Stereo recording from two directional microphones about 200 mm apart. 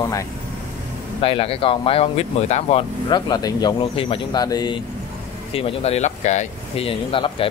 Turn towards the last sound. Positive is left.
turn(degrees=25)  # may be behind; listen again after turning